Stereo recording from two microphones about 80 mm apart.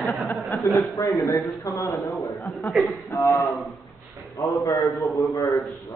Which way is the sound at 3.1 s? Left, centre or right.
Left.